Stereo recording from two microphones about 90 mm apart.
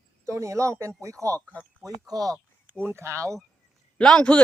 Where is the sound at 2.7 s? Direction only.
25° right (ahead or behind).